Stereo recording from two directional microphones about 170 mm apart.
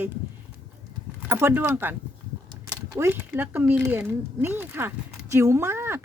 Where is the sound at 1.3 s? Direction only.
15° right (ahead or behind).